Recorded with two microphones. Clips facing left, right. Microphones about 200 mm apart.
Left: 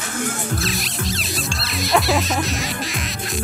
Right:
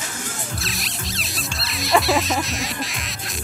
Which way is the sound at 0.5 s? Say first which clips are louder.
Left 7 dB; centre (ahead or behind).